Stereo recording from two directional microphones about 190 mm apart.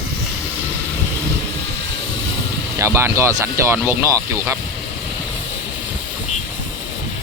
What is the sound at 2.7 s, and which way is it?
Speech, 15° right (ahead or behind).